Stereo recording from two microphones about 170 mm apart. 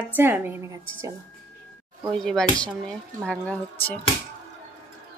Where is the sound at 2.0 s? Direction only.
5° left (ahead or behind).